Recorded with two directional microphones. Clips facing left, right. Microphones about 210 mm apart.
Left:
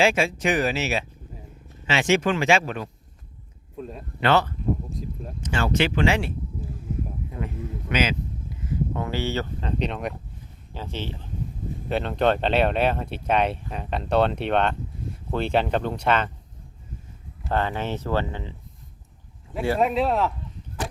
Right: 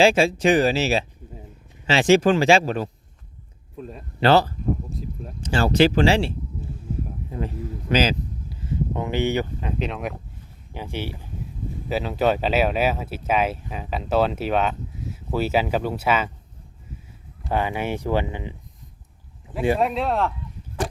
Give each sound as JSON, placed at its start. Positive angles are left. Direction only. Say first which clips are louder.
{"t": 0.0, "sound": "speech", "louder": "right 4 dB", "side_deg": -30}
{"t": 3.8, "sound": "speech", "louder": "left 1 dB", "side_deg": 0}
{"t": 4.2, "sound": "speech", "louder": "right 4 dB", "side_deg": -35}
{"t": 10.8, "sound": "speech", "louder": "right 2 dB", "side_deg": -10}
{"t": 17.5, "sound": "speech", "louder": "right 1 dB", "side_deg": -10}
{"t": 19.8, "sound": "speech", "louder": "left 1 dB", "side_deg": 0}